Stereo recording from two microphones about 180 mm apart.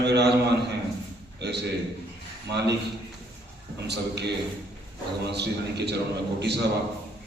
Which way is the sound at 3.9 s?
70° right (ahead or behind).